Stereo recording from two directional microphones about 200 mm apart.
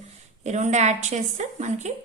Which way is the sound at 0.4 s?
35° right (ahead or behind).